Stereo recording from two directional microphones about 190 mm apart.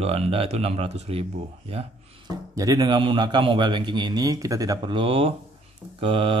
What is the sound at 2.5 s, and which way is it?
A man's voice, 20° right (ahead or behind).